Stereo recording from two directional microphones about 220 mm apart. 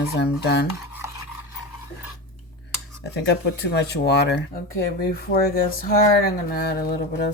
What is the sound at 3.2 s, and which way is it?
Speech, 50° left (ahead or behind).